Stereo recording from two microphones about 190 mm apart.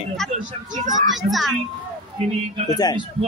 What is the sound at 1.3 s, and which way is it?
Speech, centre (ahead or behind).